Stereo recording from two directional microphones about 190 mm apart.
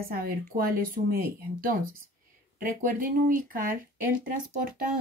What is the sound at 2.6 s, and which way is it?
Speech, 45° right (ahead or behind).